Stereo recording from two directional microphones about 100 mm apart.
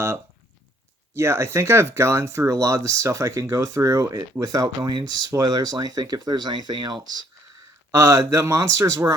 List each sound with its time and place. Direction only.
1.1 s speech: 25° right (ahead or behind); by 7.3 s 45° right (ahead or behind)
7.9 s speech: 30° right (ahead or behind)